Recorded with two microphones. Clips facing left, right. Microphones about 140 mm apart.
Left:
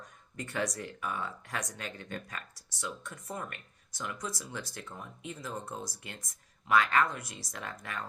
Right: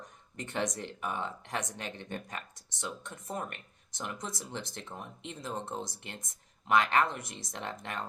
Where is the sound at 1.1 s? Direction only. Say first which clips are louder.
Right 2 dB; 25° right (ahead or behind).